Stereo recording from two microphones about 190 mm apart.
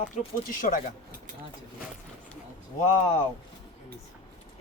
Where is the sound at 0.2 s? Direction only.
45° left (ahead or behind).